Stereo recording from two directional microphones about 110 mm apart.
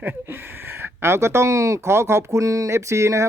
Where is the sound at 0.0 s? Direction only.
20° right (ahead or behind).